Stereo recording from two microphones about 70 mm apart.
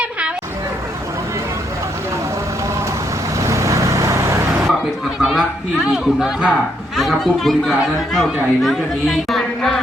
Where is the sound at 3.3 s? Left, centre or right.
Right.